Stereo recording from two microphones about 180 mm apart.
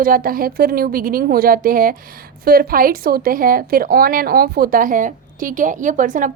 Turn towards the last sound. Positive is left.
turn(degrees=-45)  # may be behind; listen again after turning